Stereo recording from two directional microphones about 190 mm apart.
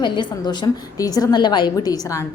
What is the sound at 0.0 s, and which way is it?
A woman's voice, 25° left (ahead or behind).